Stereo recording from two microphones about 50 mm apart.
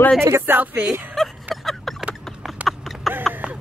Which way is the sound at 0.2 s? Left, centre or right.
Right.